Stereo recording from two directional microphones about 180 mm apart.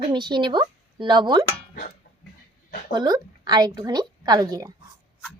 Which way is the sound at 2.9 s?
20° right (ahead or behind).